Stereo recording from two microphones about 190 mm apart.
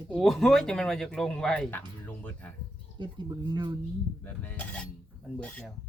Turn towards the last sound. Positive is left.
turn(degrees=5)  # may be behind; listen again after turning